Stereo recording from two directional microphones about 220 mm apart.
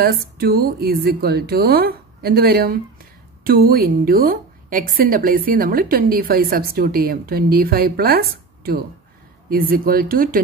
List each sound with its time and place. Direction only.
0.0 s a woman's voice: 45° right (ahead or behind)